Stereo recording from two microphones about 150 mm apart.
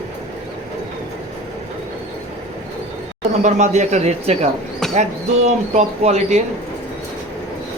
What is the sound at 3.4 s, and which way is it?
Speech, 50° right (ahead or behind).